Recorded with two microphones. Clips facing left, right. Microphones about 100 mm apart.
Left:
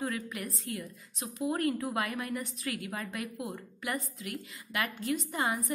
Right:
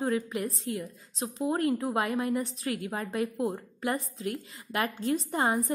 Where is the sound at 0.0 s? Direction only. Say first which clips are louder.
Right 6 dB; 25° right (ahead or behind).